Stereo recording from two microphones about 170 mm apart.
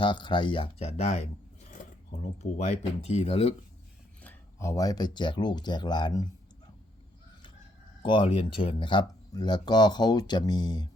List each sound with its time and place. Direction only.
0.0 s speech: 30° left (ahead or behind)
4.2 s speech: 15° left (ahead or behind)
8.0 s speech: 30° left (ahead or behind)